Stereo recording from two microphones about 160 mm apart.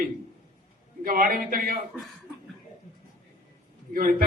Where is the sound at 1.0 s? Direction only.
65° right (ahead or behind).